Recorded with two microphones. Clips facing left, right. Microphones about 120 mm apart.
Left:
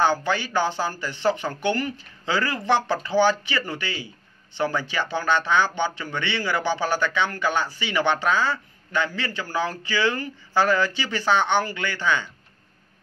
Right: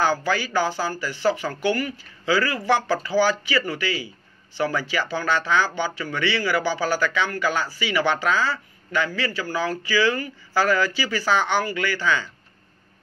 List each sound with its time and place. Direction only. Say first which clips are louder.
0.0 s speech: even; 20° left (ahead or behind)